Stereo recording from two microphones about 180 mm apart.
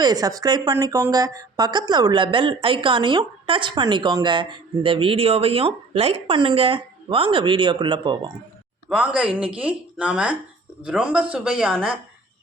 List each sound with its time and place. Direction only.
0.0 s a woman's voice: 20° right (ahead or behind)
8.9 s speech: 5° right (ahead or behind)